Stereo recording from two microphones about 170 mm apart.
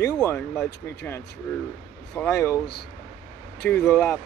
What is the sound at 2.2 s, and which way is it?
Speech, 15° left (ahead or behind).